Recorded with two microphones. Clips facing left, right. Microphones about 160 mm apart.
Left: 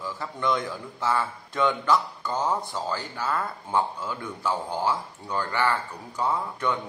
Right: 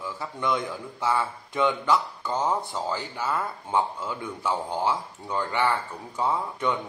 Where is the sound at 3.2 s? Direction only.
5° right (ahead or behind).